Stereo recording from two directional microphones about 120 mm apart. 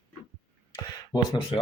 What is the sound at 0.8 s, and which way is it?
Speech, 35° left (ahead or behind).